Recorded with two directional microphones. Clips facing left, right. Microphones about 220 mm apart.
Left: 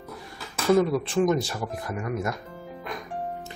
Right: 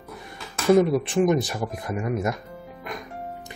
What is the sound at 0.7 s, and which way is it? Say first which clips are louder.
Speech: right 2 dB; 20° right (ahead or behind).